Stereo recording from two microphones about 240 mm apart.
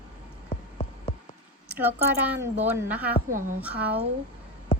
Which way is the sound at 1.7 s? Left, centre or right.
Centre.